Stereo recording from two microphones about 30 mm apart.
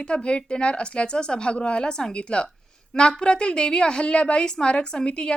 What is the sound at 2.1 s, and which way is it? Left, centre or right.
Speech, left.